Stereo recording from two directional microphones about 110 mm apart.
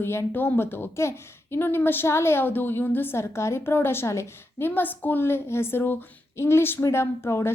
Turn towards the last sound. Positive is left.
turn(degrees=25)  # may be behind; listen again after turning